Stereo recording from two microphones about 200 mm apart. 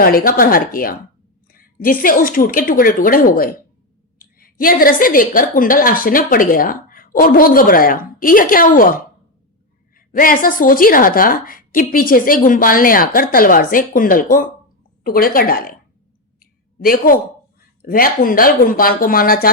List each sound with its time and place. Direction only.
0.0 s a woman's voice: 50° left (ahead or behind)
10.2 s a woman's voice: 45° left (ahead or behind)
16.4 s a sound: 45° left (ahead or behind)
17.8 s a woman's voice: 45° left (ahead or behind)